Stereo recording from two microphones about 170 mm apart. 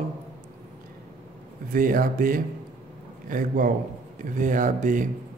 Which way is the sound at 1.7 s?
55° right (ahead or behind).